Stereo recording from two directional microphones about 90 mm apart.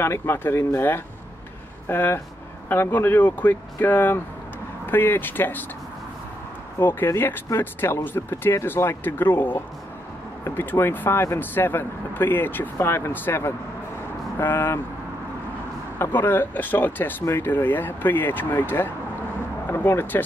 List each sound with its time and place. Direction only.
0.0 s speech: 25° left (ahead or behind)
6.8 s speech: 20° left (ahead or behind)
16.0 s speech: 25° left (ahead or behind)
17.2 s speech: 30° left (ahead or behind)